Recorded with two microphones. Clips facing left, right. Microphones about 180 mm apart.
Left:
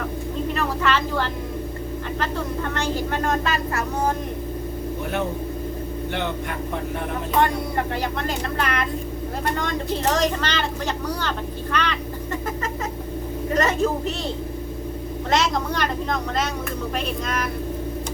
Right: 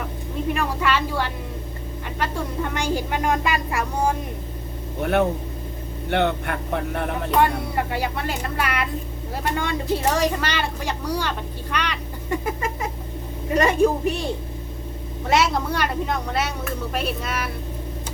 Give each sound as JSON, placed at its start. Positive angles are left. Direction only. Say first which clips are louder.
{"t": 0.5, "sound": "a sound", "louder": "even", "side_deg": -10}
{"t": 2.1, "sound": "speech", "louder": "right 2 dB", "side_deg": -10}
{"t": 6.1, "sound": "speech", "louder": "right 7 dB", "side_deg": -60}
{"t": 7.3, "sound": "speech", "louder": "right 1 dB", "side_deg": -5}
{"t": 15.3, "sound": "speech", "louder": "right 2 dB", "side_deg": -10}